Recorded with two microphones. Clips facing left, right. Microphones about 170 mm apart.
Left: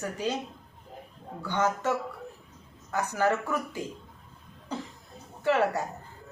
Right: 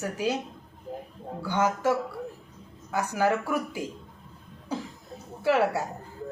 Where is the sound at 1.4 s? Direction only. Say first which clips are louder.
Right 2 dB; 10° right (ahead or behind).